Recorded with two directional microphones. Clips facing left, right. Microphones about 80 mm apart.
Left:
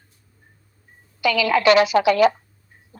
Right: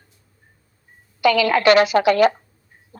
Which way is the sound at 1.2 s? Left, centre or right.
Right.